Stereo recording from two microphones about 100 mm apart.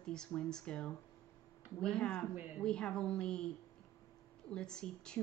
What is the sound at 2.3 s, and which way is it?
Speech, 15° right (ahead or behind).